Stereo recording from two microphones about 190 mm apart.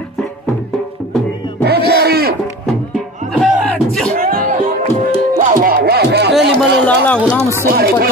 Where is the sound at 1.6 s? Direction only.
60° right (ahead or behind).